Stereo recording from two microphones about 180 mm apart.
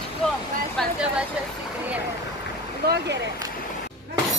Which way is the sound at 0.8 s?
Centre (ahead or behind).